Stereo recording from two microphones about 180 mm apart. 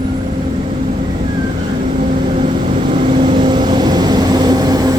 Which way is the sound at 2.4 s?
30° right (ahead or behind).